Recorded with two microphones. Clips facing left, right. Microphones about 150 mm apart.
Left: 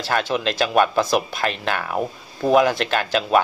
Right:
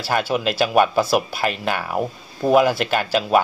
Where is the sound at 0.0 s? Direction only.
10° right (ahead or behind).